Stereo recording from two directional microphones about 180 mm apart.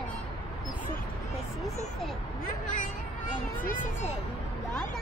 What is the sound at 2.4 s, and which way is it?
Speech, 45° left (ahead or behind).